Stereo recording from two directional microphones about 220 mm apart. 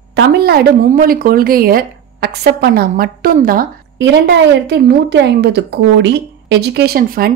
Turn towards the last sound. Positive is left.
turn(degrees=-45)  # may be behind; listen again after turning